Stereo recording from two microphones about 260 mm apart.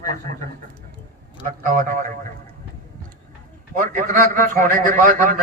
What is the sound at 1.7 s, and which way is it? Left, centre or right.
Speech, right.